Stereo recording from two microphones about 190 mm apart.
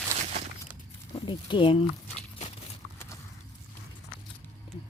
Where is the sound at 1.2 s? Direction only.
25° left (ahead or behind).